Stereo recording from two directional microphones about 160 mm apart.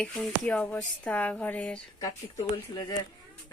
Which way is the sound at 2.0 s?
20° left (ahead or behind).